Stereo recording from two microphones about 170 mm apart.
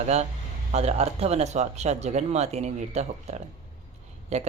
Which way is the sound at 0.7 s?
40° right (ahead or behind).